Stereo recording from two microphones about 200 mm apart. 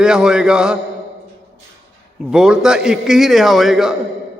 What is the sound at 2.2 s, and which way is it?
A man's voice, 5° right (ahead or behind).